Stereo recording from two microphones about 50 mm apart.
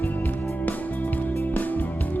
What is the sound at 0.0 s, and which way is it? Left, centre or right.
Music, left.